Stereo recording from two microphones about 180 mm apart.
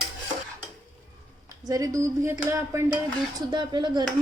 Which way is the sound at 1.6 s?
20° right (ahead or behind).